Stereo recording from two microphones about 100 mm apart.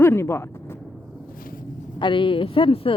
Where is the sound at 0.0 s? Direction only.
25° left (ahead or behind).